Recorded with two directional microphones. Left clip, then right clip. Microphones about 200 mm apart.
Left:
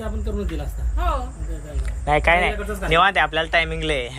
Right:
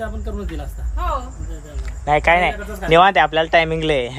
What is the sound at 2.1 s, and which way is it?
A man's voice, 20° right (ahead or behind).